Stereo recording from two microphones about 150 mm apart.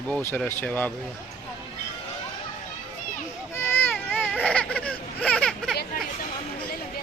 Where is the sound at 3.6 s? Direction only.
15° left (ahead or behind).